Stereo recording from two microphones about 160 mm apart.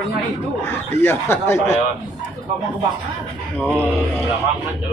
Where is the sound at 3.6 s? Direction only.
5° right (ahead or behind).